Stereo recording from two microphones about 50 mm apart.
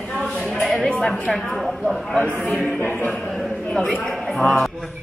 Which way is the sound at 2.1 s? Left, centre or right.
Left.